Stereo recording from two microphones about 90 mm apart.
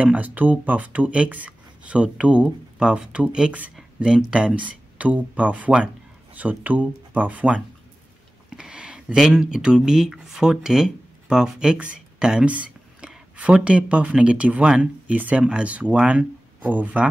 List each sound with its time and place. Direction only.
0.0 s speech: 15° right (ahead or behind)